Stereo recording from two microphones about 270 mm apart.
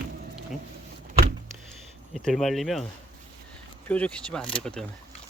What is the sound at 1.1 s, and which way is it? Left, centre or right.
Power windows, right.